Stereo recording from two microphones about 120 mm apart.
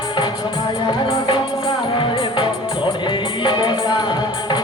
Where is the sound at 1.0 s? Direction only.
45° left (ahead or behind).